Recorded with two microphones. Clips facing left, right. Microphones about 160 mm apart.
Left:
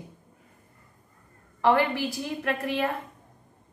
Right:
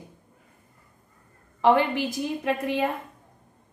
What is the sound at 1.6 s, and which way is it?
A woman's voice, 20° right (ahead or behind).